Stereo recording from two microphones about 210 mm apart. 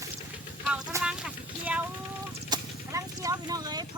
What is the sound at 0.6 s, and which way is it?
Speech, 5° right (ahead or behind).